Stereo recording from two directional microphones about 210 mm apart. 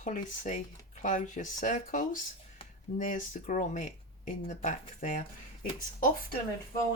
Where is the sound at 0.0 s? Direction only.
35° left (ahead or behind).